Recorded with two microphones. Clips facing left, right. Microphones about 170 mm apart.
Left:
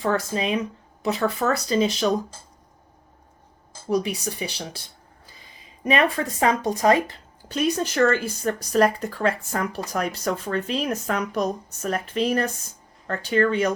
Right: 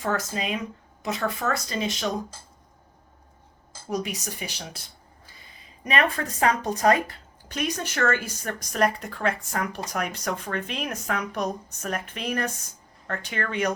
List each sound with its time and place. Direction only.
0.0 s speech: 30° left (ahead or behind)
3.8 s speech: 30° left (ahead or behind)
6.4 s speech: 25° left (ahead or behind)